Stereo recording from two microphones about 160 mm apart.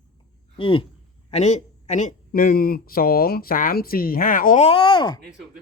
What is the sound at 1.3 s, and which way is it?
Speech, 45° left (ahead or behind).